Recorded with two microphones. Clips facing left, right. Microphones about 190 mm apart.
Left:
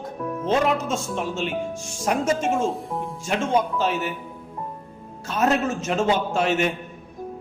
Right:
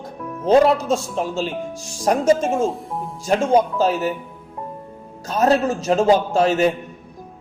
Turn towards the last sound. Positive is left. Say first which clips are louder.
# right 5 dB
turn(degrees=-35)  # may be behind; listen again after turning